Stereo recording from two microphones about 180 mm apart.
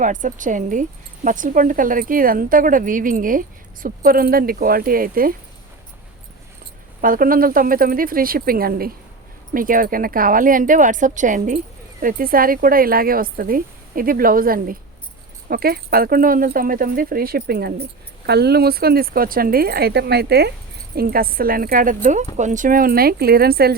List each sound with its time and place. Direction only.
0.0 s speech: 45° right (ahead or behind)
7.0 s speech: 50° right (ahead or behind)